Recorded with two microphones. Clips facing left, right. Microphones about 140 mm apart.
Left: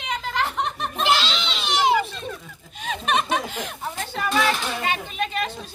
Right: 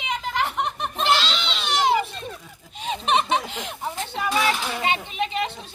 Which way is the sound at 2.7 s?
25° right (ahead or behind).